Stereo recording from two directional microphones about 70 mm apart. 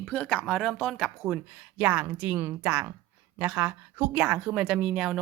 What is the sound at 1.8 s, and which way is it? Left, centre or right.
A woman's voice, centre.